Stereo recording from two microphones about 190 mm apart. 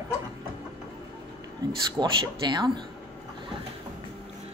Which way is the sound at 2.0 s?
25° right (ahead or behind).